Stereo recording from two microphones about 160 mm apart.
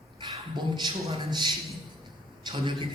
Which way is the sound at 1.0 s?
35° right (ahead or behind).